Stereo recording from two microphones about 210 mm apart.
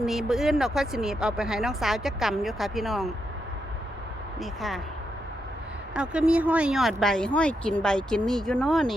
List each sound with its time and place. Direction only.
0.0 s speech: centre (ahead or behind)
4.4 s speech: centre (ahead or behind)
5.9 s speech: 5° right (ahead or behind)